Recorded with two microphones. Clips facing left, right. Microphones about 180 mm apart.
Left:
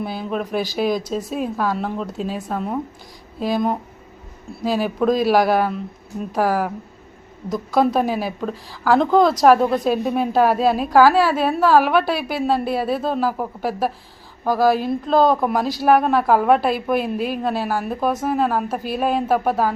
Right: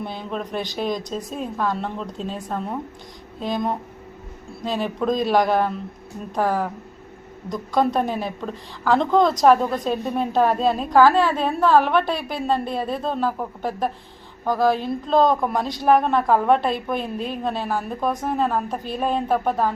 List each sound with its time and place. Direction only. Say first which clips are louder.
0.0 s a woman's voice: left 4 dB; 5° left (ahead or behind)